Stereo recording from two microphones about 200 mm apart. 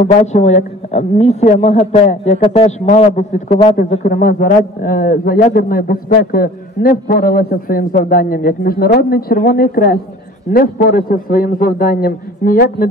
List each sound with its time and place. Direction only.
0.0 s a man's voice: 35° left (ahead or behind)